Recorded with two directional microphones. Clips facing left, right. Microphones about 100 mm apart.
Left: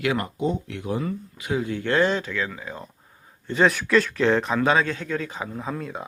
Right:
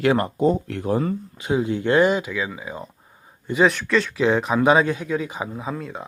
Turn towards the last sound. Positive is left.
turn(degrees=0)  # may be behind; listen again after turning